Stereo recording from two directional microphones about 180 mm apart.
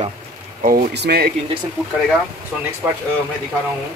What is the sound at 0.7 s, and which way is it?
Speech, 60° right (ahead or behind).